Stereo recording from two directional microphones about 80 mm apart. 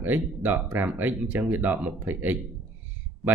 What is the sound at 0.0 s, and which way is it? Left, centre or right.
Speech, right.